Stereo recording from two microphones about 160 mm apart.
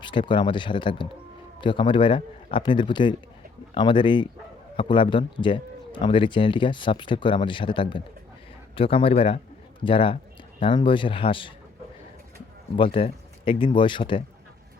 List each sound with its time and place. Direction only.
0.0 s speech: 30° left (ahead or behind)
12.7 s speech: 35° left (ahead or behind)